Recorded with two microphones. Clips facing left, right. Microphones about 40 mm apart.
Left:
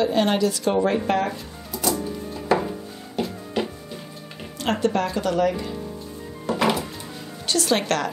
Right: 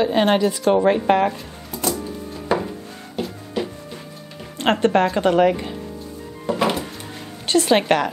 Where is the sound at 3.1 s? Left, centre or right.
Centre.